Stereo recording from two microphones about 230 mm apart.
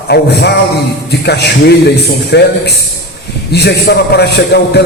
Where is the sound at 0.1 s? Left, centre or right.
Left.